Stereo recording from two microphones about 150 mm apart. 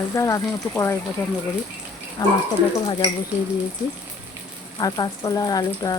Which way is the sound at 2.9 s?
30° left (ahead or behind).